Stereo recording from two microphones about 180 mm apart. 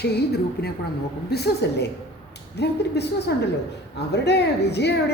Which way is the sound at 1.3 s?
65° left (ahead or behind).